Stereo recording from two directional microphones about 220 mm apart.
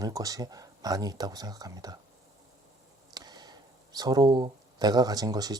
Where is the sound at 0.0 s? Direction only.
15° right (ahead or behind).